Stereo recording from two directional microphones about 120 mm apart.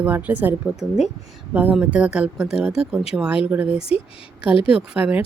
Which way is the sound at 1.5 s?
10° right (ahead or behind).